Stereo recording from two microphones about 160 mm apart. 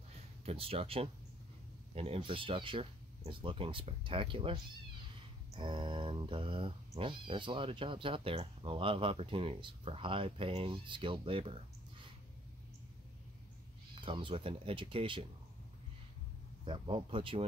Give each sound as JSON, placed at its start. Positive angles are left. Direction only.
{"t": 0.5, "sound": "speech", "side_deg": -35}
{"t": 5.6, "sound": "speech", "side_deg": -30}
{"t": 13.9, "sound": "speech", "side_deg": -30}
{"t": 16.6, "sound": "speech", "side_deg": -30}